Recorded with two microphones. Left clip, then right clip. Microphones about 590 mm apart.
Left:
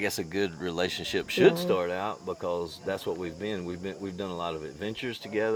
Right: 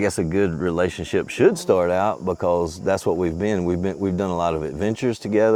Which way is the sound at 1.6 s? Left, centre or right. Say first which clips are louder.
Right 10 dB; right.